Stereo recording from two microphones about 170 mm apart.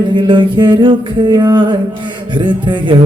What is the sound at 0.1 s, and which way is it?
Music, 30° right (ahead or behind).